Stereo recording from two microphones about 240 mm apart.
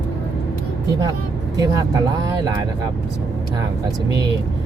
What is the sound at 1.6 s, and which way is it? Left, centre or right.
Speech, centre.